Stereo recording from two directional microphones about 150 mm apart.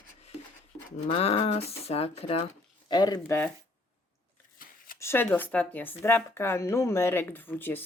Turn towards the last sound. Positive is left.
turn(degrees=15)  # may be behind; listen again after turning